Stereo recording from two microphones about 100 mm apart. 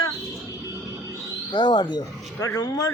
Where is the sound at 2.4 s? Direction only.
30° left (ahead or behind).